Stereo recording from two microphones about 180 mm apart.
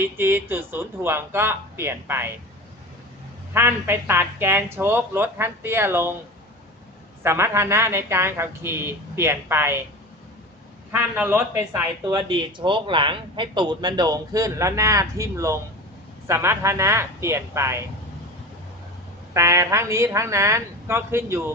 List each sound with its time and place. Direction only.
0.0 s speech: 10° right (ahead or behind)
3.5 s speech: 10° right (ahead or behind)
7.2 s speech: 15° right (ahead or behind)
10.9 s speech: 10° right (ahead or behind)
12.0 s speech: 25° right (ahead or behind)
19.3 s speech: 15° right (ahead or behind)